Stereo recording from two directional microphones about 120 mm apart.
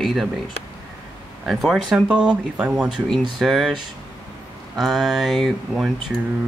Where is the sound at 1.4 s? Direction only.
Centre (ahead or behind).